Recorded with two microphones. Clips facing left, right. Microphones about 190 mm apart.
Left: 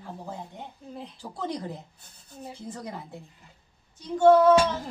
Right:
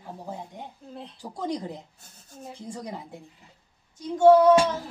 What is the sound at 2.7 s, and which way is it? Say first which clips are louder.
Speech: right 2 dB; 15° right (ahead or behind).